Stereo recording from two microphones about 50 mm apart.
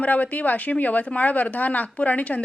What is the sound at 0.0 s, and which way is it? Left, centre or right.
Speech, left.